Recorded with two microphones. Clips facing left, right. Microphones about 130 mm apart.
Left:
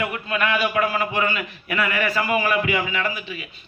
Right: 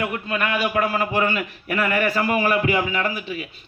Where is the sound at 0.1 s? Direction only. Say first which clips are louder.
Left 1 dB; 40° right (ahead or behind).